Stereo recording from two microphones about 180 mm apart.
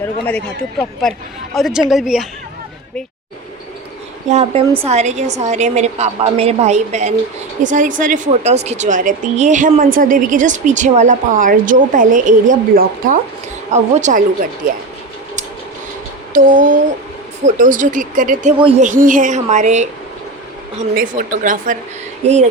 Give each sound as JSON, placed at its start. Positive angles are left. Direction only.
{"t": 0.3, "sound": "speech", "side_deg": 5}
{"t": 4.3, "sound": "a woman's voice", "side_deg": -35}
{"t": 16.3, "sound": "speech", "side_deg": -50}
{"t": 18.5, "sound": "speech", "side_deg": -30}
{"t": 18.8, "sound": "speech", "side_deg": -45}
{"t": 20.9, "sound": "a woman's voice", "side_deg": -50}